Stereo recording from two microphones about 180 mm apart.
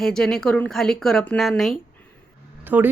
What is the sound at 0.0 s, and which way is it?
A woman's voice, 5° left (ahead or behind).